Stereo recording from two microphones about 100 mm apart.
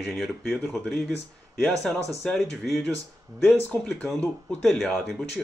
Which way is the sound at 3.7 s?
15° left (ahead or behind).